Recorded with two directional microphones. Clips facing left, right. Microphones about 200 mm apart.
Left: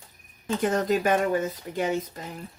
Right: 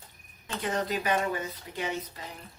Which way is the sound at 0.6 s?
45° left (ahead or behind).